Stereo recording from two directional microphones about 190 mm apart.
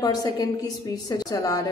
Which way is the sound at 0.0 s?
20° left (ahead or behind).